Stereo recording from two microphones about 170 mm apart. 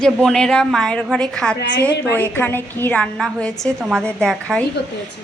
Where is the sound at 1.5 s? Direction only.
90° left.